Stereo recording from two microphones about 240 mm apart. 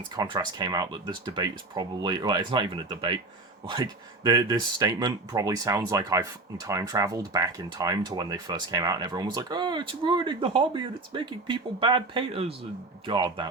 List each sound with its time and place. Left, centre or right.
0.2 s speech: centre